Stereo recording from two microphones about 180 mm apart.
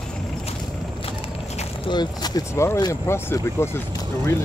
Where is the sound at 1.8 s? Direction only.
25° left (ahead or behind).